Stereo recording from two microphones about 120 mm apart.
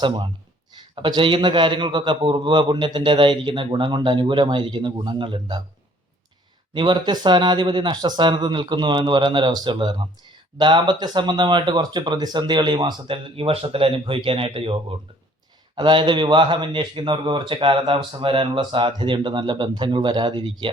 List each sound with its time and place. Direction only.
0.0 s speech: 40° right (ahead or behind)
6.7 s speech: 40° right (ahead or behind)